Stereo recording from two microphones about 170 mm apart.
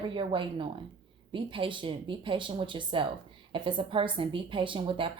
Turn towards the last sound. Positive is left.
turn(degrees=-30)  # may be behind; listen again after turning